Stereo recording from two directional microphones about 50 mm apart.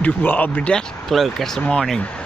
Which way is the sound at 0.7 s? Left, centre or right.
Centre.